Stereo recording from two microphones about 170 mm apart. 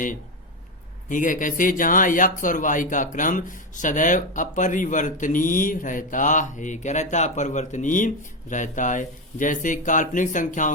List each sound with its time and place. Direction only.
1.1 s speech: 50° left (ahead or behind)